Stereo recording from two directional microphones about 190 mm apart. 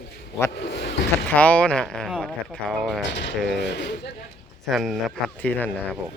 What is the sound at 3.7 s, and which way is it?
Speech, 65° left (ahead or behind).